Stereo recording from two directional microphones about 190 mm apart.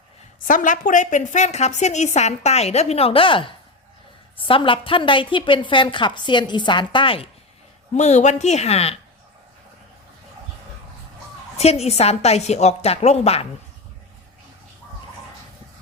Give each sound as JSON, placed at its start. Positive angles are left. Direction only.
{"t": 0.4, "sound": "a woman's voice", "side_deg": 45}
{"t": 11.5, "sound": "a woman's voice", "side_deg": 35}